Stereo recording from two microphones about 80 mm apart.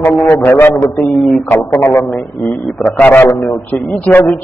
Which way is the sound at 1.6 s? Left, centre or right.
Left.